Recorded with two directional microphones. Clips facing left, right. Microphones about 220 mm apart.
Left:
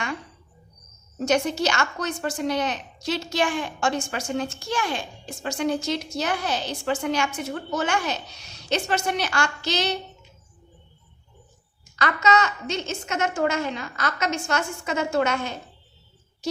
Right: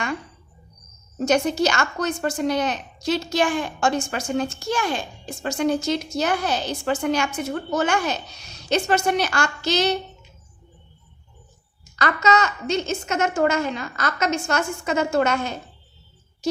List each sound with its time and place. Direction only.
1.2 s speech: 40° right (ahead or behind)
11.9 s speech: 40° right (ahead or behind)